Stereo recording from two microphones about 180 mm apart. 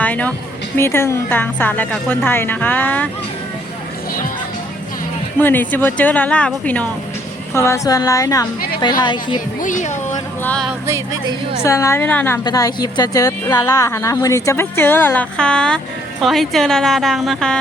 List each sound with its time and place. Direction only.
0.0 s a woman's voice: 10° left (ahead or behind)
5.4 s a woman's voice: 10° left (ahead or behind)
9.6 s speech: 45° left (ahead or behind)
10.4 s a woman's voice: 5° left (ahead or behind)
10.7 s speech: 15° right (ahead or behind)
11.6 s a woman's voice: 15° left (ahead or behind)
12.5 s a woman's voice: 20° left (ahead or behind); by 17.6 s centre (ahead or behind)